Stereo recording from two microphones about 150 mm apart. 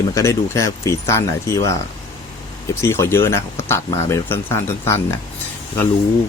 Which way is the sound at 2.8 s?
15° left (ahead or behind).